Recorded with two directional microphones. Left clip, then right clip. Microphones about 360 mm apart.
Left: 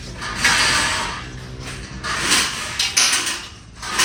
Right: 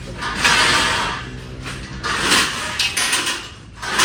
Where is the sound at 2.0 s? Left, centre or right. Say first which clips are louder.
Right 2 dB; centre.